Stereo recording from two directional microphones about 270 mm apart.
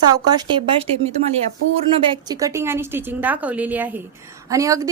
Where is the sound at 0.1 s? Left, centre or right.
Centre.